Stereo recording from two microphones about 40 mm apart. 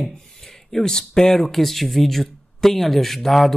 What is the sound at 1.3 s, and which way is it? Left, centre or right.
Speech, centre.